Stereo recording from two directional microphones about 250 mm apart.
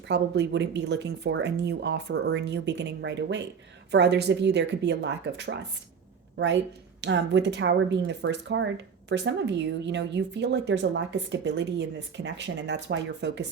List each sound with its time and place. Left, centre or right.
0.1 s a woman's voice: right